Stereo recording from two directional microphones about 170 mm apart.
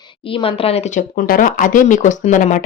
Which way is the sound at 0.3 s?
30° left (ahead or behind).